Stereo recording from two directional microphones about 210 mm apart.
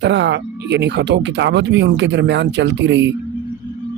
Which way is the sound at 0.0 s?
60° right (ahead or behind).